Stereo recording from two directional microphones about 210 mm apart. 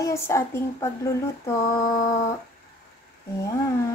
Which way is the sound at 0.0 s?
15° left (ahead or behind).